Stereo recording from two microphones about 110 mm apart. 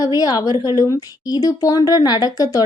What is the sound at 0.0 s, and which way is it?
A woman's voice, 35° left (ahead or behind).